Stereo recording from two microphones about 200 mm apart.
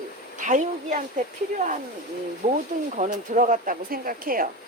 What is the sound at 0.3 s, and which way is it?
A woman's voice, 40° right (ahead or behind).